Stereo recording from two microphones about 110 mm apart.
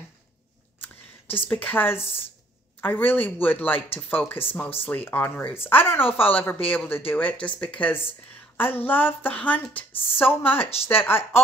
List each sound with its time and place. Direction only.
1.3 s speech: 20° left (ahead or behind)